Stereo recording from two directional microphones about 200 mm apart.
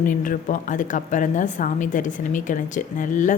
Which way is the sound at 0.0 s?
40° left (ahead or behind).